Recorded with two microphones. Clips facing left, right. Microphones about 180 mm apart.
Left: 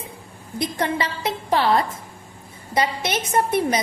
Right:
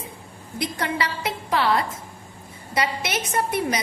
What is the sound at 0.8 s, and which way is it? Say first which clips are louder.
A woman's voice: left 3 dB; 25° left (ahead or behind).